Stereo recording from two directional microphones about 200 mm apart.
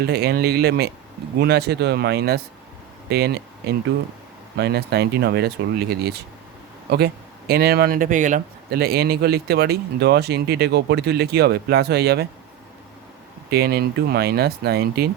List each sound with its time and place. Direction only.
0.0 s speech: 55° right (ahead or behind)
13.5 s speech: 50° right (ahead or behind)